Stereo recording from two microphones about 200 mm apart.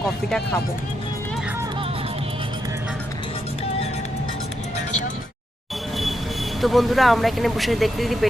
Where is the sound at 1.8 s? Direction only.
30° right (ahead or behind).